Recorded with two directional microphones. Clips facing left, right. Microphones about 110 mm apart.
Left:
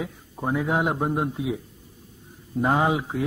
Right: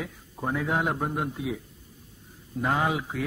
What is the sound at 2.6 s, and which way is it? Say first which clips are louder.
Speech: left 4 dB; 25° left (ahead or behind).